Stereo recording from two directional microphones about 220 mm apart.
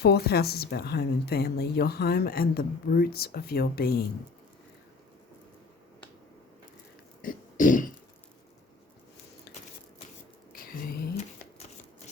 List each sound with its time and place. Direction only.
0.0 s a woman's voice: 45° left (ahead or behind)
7.2 s throat clearing: 40° left (ahead or behind)
10.6 s a sound: 40° left (ahead or behind)